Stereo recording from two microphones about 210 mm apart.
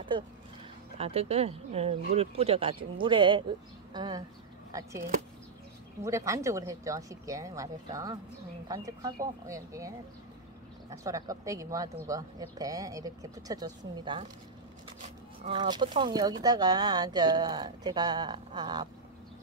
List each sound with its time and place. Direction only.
0.9 s speech: 30° right (ahead or behind)
6.0 s speech: 15° right (ahead or behind)
15.4 s speech: 20° right (ahead or behind)